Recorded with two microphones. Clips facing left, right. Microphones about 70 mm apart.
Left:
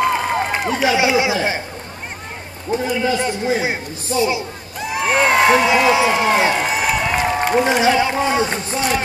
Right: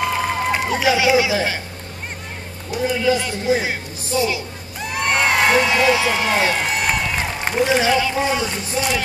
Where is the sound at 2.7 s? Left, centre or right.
Left.